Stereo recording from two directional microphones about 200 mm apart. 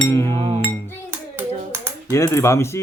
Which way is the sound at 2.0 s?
15° left (ahead or behind).